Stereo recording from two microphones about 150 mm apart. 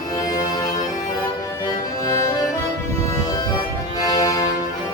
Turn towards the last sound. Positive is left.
turn(degrees=25)  # may be behind; listen again after turning